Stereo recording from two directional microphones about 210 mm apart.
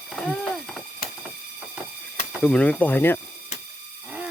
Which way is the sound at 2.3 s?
5° left (ahead or behind).